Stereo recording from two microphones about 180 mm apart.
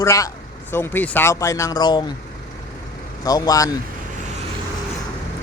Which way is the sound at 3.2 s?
20° left (ahead or behind).